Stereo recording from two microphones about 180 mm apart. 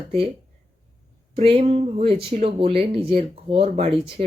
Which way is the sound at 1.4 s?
35° right (ahead or behind).